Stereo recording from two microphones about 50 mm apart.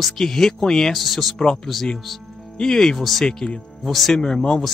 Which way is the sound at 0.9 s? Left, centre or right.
Centre.